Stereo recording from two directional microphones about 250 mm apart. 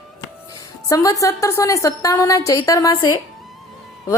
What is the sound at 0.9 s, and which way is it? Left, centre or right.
A woman's voice, centre.